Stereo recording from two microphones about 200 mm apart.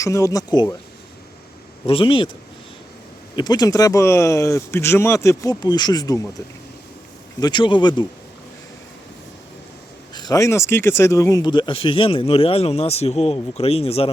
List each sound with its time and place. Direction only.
0.0 s speech: 15° left (ahead or behind)
1.9 s speech: 25° left (ahead or behind)
3.3 s speech: 20° left (ahead or behind)
7.3 s speech: 20° left (ahead or behind)
10.2 s speech: 20° left (ahead or behind)